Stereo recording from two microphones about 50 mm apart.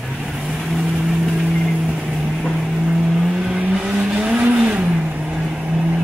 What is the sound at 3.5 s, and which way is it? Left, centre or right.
Vehicle, right.